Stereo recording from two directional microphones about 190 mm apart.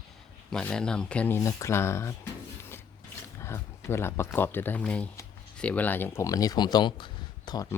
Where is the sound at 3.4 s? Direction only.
15° left (ahead or behind).